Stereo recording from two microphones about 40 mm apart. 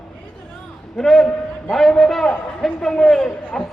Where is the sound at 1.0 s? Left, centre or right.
Centre.